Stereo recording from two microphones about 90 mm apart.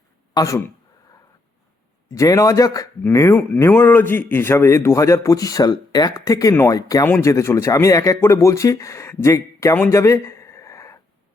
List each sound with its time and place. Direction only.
0.3 s speech: 35° left (ahead or behind)
2.0 s a man's voice: 35° left (ahead or behind)
3.3 s a man's voice: 20° left (ahead or behind); by 7.0 s 40° left (ahead or behind)
7.0 s a man's voice: 30° left (ahead or behind)
9.9 s a sound: 35° left (ahead or behind)